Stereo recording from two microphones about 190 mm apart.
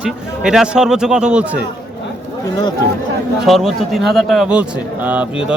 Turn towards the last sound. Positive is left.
turn(degrees=-5)  # may be behind; listen again after turning